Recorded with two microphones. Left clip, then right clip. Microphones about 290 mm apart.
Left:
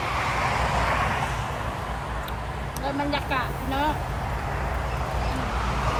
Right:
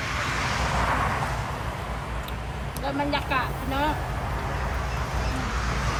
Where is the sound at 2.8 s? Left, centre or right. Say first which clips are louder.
Even; centre.